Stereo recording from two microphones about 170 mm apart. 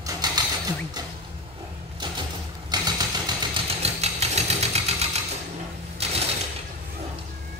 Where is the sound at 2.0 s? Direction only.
25° right (ahead or behind).